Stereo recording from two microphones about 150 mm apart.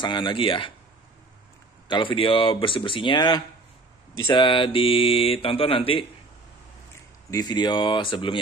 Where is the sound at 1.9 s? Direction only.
35° left (ahead or behind).